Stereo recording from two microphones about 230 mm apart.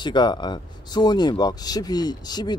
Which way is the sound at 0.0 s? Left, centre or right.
Centre.